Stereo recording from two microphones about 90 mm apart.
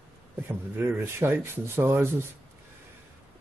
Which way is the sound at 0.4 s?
25° right (ahead or behind).